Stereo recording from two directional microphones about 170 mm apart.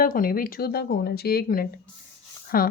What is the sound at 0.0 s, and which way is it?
A woman's voice, 55° left (ahead or behind).